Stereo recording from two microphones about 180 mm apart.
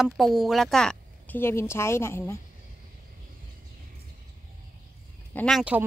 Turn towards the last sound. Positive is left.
turn(degrees=5)  # may be behind; listen again after turning